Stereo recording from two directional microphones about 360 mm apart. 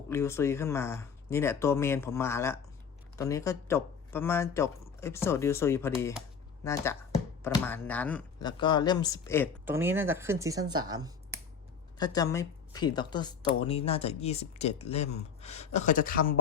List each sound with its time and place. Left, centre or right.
0.1 s speech: centre
9.6 s speech: centre
11.9 s speech: centre